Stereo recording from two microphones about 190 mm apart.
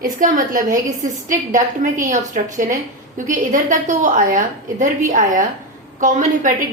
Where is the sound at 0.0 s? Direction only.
45° right (ahead or behind).